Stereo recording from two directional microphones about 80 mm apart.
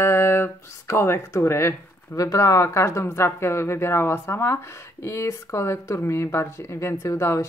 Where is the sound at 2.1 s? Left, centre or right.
Left.